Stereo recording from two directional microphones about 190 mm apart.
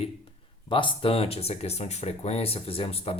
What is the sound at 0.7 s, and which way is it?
Speech, 25° left (ahead or behind).